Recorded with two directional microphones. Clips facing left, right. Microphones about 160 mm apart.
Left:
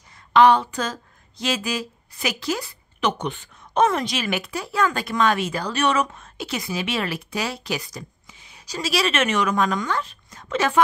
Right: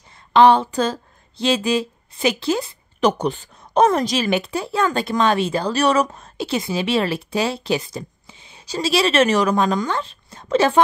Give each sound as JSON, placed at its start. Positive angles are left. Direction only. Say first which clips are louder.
{"t": 0.3, "sound": "a woman's voice", "louder": "right 2 dB", "side_deg": -30}